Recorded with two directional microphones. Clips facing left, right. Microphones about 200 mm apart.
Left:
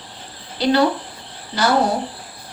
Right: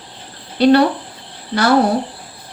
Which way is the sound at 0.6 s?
60° right (ahead or behind).